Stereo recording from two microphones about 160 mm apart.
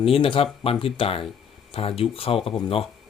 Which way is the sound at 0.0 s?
35° left (ahead or behind).